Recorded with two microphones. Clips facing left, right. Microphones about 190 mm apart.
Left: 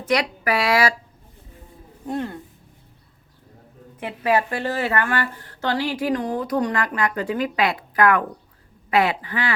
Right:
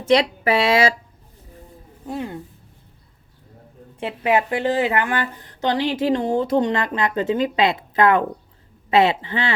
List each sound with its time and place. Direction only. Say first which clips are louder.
0.0 s speech: right 5 dB; 25° right (ahead or behind)
2.0 s speech: left 2 dB; 5° right (ahead or behind)
4.0 s speech: right 1 dB; 20° right (ahead or behind)